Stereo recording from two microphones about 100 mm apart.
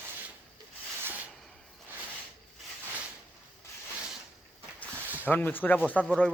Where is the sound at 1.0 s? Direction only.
20° right (ahead or behind).